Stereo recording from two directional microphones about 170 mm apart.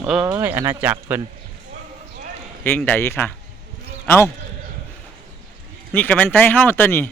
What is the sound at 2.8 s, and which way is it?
A man's voice, 15° left (ahead or behind).